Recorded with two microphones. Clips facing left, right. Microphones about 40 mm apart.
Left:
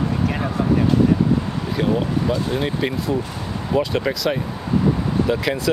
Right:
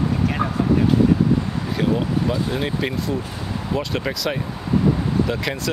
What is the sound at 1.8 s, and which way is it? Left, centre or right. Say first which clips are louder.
Speech: left 1 dB; centre.